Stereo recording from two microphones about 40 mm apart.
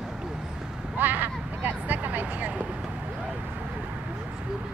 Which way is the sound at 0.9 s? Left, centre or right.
Right.